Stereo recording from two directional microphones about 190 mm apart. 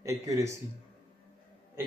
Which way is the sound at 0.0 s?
15° right (ahead or behind).